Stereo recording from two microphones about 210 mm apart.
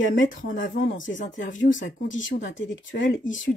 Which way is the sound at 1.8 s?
65° left (ahead or behind).